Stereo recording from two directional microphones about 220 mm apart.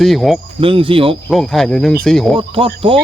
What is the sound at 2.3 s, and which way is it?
Speech, 25° right (ahead or behind).